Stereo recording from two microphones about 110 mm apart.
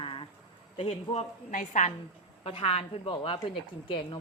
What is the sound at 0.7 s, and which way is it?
Speech, 65° left (ahead or behind).